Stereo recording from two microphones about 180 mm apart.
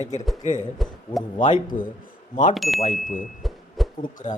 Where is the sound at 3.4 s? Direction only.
Centre (ahead or behind).